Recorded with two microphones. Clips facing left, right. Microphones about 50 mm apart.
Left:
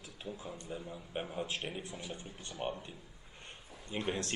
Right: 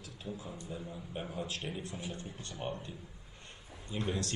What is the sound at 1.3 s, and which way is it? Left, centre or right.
Speech, left.